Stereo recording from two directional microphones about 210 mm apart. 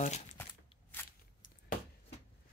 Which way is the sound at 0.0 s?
35° left (ahead or behind).